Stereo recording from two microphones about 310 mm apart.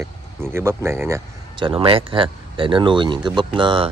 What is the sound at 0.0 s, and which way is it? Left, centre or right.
Speech, centre.